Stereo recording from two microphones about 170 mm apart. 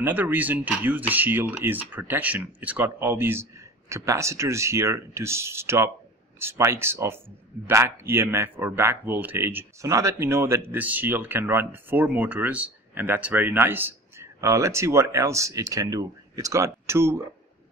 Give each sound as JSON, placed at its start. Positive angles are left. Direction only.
{"t": 0.0, "sound": "speech", "side_deg": -10}